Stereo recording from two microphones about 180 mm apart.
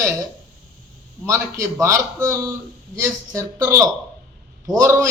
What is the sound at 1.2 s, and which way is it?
A man's voice, 15° right (ahead or behind).